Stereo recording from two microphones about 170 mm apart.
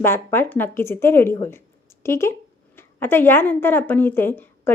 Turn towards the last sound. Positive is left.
turn(degrees=10)  # may be behind; listen again after turning